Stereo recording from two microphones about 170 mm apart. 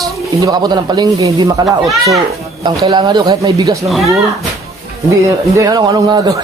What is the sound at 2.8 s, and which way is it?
Speech, 25° right (ahead or behind).